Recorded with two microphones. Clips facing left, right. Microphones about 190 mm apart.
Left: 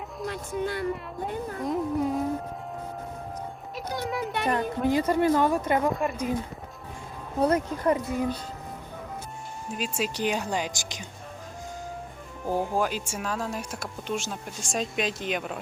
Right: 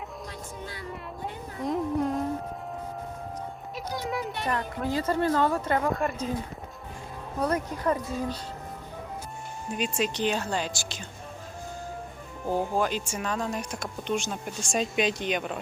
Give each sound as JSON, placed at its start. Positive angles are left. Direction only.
{"t": 0.3, "sound": "speech", "side_deg": 65}
{"t": 1.6, "sound": "speech", "side_deg": 0}
{"t": 3.9, "sound": "speech", "side_deg": 0}
{"t": 4.4, "sound": "speech", "side_deg": 20}
{"t": 5.9, "sound": "speech", "side_deg": 0}
{"t": 7.3, "sound": "speech", "side_deg": 25}
{"t": 9.7, "sound": "speech", "side_deg": 5}
{"t": 12.5, "sound": "speech", "side_deg": 10}